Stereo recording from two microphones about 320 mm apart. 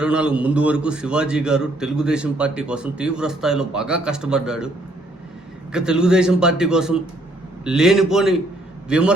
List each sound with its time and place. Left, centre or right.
0.0 s a man's voice: centre
5.7 s a man's voice: centre